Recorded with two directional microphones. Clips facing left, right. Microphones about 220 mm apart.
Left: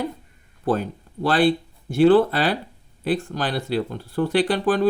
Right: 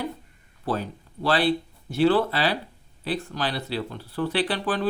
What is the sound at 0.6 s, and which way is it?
Speech, 50° left (ahead or behind).